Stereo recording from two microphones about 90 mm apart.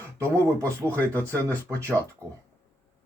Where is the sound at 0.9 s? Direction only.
20° left (ahead or behind).